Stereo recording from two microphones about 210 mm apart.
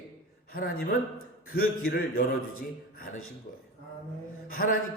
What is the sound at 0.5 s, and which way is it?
A man's voice, 45° left (ahead or behind).